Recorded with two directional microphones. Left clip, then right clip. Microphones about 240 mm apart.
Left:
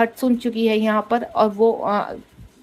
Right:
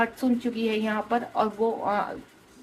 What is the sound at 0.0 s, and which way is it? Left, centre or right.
A woman's voice, left.